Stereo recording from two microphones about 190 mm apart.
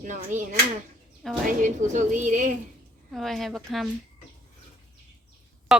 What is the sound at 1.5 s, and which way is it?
A woman's voice, 40° right (ahead or behind).